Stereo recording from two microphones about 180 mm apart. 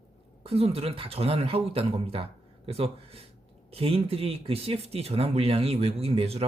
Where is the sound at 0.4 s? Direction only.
35° right (ahead or behind).